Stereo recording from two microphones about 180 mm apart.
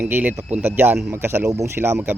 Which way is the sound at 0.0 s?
10° right (ahead or behind).